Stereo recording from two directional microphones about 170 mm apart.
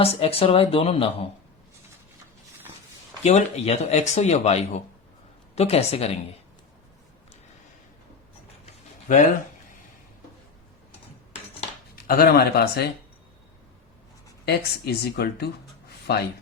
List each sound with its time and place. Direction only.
0.0 s speech: 35° left (ahead or behind)
3.2 s speech: 40° left (ahead or behind)
12.0 s speech: 60° left (ahead or behind)
14.4 s speech: 70° left (ahead or behind)